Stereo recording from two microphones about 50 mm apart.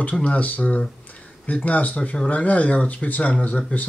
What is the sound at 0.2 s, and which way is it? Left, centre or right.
Speech, left.